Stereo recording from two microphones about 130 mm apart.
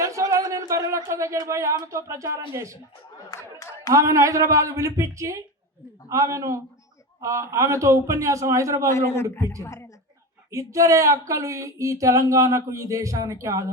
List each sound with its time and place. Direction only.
0.0 s a sound: 25° right (ahead or behind)
1.9 s speech: 25° right (ahead or behind)
3.2 s chatter: 25° left (ahead or behind)
3.9 s speech: 25° right (ahead or behind)
8.9 s a man's voice: 20° left (ahead or behind)
10.5 s speech: 25° right (ahead or behind)